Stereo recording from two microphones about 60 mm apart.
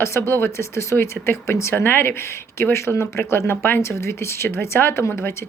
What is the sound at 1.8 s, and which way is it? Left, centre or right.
Speech, left.